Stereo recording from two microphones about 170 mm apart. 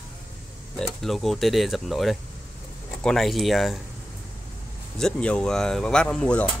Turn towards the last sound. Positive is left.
turn(degrees=5)  # may be behind; listen again after turning